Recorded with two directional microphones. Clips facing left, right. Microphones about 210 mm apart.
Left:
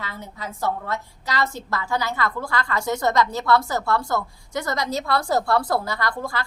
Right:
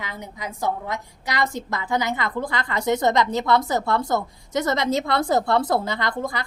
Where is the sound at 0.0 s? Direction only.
15° right (ahead or behind).